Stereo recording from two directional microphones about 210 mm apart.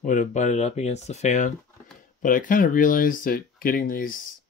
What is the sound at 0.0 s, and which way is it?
Speech, 35° left (ahead or behind).